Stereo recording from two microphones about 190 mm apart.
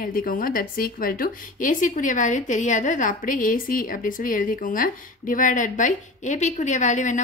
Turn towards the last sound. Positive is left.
turn(degrees=40)  # may be behind; listen again after turning